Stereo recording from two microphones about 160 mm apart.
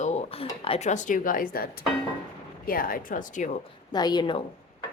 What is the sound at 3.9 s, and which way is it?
Speech, 25° left (ahead or behind).